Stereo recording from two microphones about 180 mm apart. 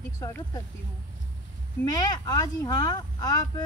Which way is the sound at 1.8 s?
20° left (ahead or behind).